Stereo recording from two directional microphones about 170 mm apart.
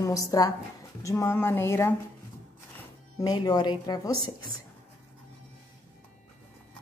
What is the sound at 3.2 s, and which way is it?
Speech, 25° left (ahead or behind).